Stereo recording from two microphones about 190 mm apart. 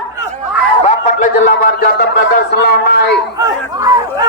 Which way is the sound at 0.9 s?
40° left (ahead or behind).